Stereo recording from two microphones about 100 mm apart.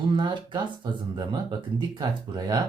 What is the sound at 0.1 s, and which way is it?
Speech, 55° right (ahead or behind).